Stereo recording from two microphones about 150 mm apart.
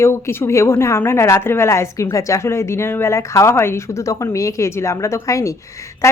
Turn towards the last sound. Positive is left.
turn(degrees=20)  # may be behind; listen again after turning